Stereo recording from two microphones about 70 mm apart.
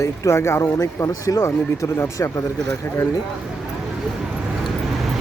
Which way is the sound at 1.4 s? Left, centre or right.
Left.